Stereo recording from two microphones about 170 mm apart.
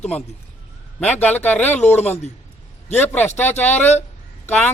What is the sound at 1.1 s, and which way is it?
Speech, 10° left (ahead or behind).